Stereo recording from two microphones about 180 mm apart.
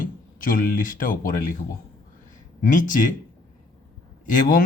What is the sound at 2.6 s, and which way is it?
Speech, 45° left (ahead or behind).